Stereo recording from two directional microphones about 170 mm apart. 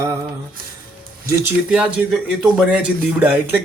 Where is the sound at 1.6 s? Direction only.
5° right (ahead or behind).